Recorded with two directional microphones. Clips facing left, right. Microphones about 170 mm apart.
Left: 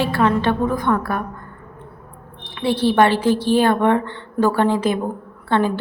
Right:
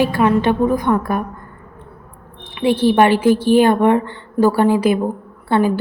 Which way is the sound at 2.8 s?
15° right (ahead or behind).